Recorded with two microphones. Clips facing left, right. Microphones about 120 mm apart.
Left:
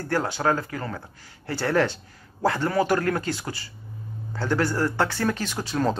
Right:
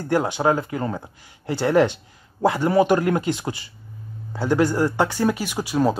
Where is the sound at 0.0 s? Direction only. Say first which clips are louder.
Right 4 dB; 15° right (ahead or behind).